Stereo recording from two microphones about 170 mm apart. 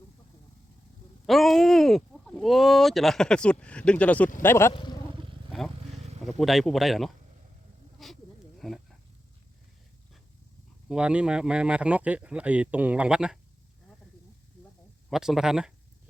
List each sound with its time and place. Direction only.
1.3 s speech: centre (ahead or behind)
4.7 s speech: 25° left (ahead or behind)
5.5 s vehicle: 5° left (ahead or behind)
6.2 s speech: centre (ahead or behind)
7.9 s snake: centre (ahead or behind)
10.8 s speech: 5° right (ahead or behind)
15.1 s speech: centre (ahead or behind)